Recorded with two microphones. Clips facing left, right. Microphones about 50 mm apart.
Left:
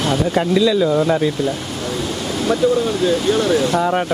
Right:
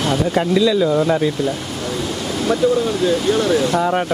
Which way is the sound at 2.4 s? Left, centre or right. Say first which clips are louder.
Even; left.